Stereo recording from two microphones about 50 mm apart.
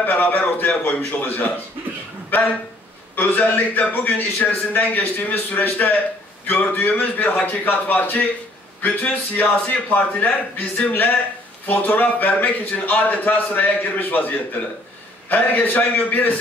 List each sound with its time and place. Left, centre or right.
0.0 s a man's voice: left
3.2 s a man's voice: left